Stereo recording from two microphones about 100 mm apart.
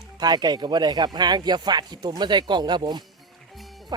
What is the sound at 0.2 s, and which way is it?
Speech, 45° right (ahead or behind).